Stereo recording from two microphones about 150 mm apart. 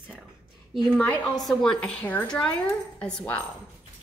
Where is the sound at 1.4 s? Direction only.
5° left (ahead or behind).